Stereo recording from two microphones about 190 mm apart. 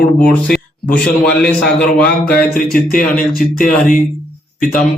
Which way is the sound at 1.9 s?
5° left (ahead or behind).